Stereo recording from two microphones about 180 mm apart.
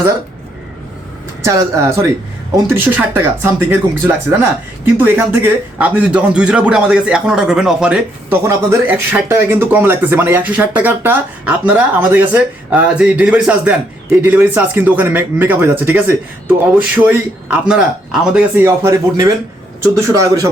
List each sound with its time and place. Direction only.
1.5 s a man's voice: 15° right (ahead or behind)